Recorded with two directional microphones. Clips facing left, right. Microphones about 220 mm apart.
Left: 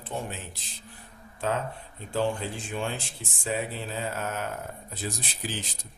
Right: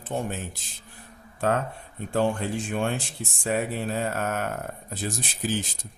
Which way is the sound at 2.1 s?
60° right (ahead or behind).